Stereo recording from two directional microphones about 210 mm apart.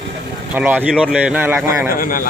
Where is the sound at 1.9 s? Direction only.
40° left (ahead or behind).